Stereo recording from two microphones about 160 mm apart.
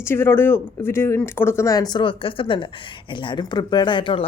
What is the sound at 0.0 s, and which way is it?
Speech, 15° left (ahead or behind).